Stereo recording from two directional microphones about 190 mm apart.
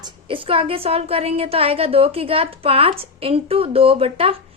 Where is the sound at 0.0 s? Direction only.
25° right (ahead or behind).